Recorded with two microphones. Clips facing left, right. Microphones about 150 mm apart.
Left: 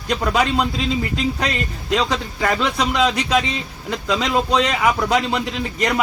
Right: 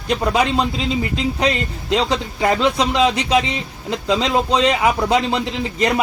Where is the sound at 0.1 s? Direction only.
20° right (ahead or behind).